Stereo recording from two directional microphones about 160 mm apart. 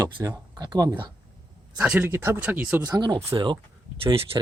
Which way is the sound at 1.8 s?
10° right (ahead or behind).